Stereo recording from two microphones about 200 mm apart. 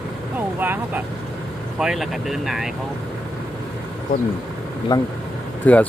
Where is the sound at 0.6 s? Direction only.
10° right (ahead or behind).